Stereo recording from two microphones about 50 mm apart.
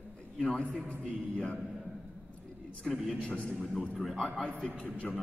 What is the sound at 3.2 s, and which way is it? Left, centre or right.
Speech, left.